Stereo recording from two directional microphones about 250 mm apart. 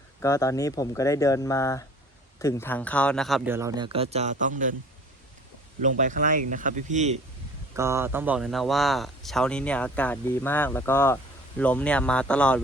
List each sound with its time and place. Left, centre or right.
0.2 s speech: centre; by 4.7 s right
5.8 s speech: right
7.8 s speech: centre